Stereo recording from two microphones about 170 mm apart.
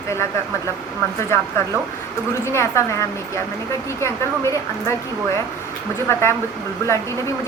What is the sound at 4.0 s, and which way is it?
Speech, 15° left (ahead or behind).